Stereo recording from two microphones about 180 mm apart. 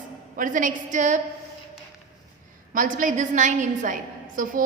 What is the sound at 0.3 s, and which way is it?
Speech, 45° right (ahead or behind).